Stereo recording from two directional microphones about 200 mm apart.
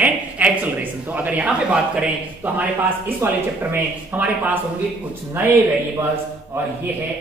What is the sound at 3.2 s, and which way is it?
A man's voice, 10° right (ahead or behind).